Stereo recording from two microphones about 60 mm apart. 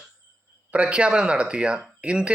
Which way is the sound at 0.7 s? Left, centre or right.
Centre.